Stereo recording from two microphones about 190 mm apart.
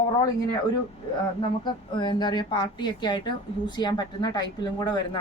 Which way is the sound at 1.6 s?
25° left (ahead or behind).